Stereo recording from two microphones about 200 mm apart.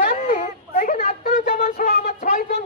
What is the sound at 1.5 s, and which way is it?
Speech, 45° left (ahead or behind).